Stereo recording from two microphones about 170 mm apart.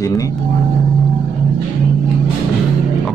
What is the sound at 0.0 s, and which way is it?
Speech, 20° left (ahead or behind).